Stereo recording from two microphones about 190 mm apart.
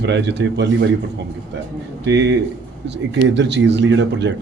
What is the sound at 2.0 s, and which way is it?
Speech, 65° right (ahead or behind).